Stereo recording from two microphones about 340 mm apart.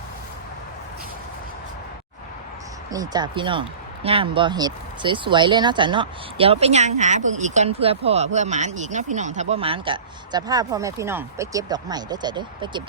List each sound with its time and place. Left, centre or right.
2.9 s speech: centre